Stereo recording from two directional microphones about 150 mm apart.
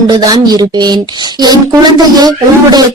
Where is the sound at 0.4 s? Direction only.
25° right (ahead or behind).